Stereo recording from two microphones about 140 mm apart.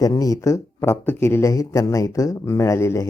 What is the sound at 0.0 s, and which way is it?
Speech, 25° left (ahead or behind).